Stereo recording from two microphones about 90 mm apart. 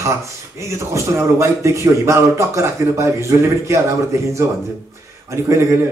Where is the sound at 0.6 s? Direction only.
30° right (ahead or behind).